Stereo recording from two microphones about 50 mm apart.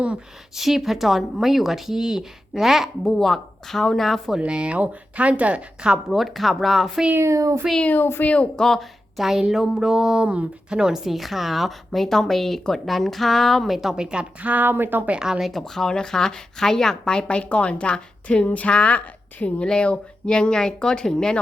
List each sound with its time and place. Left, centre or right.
0.5 s speech: centre
3.0 s speech: centre
4.4 s a woman's voice: centre
6.1 s speech: centre
7.2 s a sound: right
7.9 s speech: left
8.2 s a woman's voice: left
8.5 s speech: centre
13.9 s a woman's voice: centre
14.4 s speech: right
14.7 s speech: right
15.2 s speech: centre
15.6 s a woman's voice: centre